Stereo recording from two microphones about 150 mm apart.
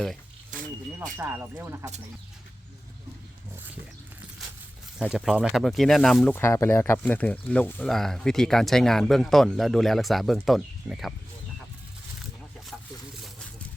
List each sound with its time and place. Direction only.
1.2 s speech: 15° right (ahead or behind)
4.9 s speech: 5° right (ahead or behind)
6.3 s speech: 15° left (ahead or behind); by 11.1 s centre (ahead or behind)